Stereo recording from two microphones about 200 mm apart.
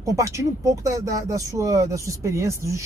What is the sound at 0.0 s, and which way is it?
Speech, 15° right (ahead or behind).